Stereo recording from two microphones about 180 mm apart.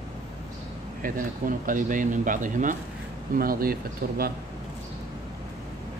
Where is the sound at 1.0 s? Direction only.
50° right (ahead or behind).